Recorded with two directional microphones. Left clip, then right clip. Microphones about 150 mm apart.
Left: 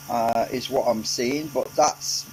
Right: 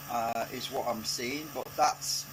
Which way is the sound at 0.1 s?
45° left (ahead or behind).